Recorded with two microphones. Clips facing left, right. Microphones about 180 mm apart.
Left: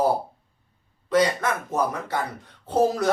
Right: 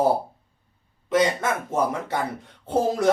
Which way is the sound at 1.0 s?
25° right (ahead or behind).